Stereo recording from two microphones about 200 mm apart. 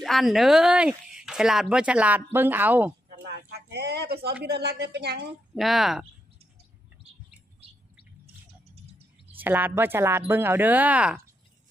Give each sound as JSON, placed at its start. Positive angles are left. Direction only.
{"t": 0.0, "sound": "speech", "side_deg": 0}
{"t": 3.3, "sound": "a woman's voice", "side_deg": -55}
{"t": 5.6, "sound": "speech", "side_deg": 0}
{"t": 9.4, "sound": "speech", "side_deg": -10}